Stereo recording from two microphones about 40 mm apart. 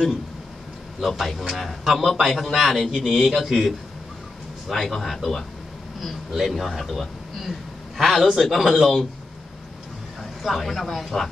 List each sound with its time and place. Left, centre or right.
1.0 s speech: centre
4.7 s speech: centre
8.0 s a sound: centre
8.4 s speech: centre
10.4 s speech: centre